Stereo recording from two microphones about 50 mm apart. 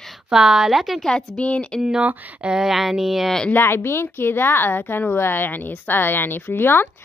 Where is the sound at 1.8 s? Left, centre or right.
Centre.